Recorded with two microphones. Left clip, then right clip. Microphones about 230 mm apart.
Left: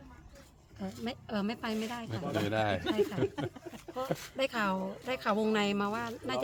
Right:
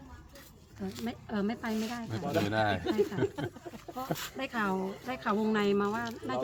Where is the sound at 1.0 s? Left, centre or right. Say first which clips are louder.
Right 1 dB; left.